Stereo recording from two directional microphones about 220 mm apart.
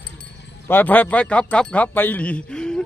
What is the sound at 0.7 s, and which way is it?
Speech, 10° left (ahead or behind).